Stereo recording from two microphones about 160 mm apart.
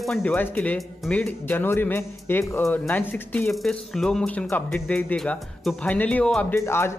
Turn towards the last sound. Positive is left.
turn(degrees=15)  # may be behind; listen again after turning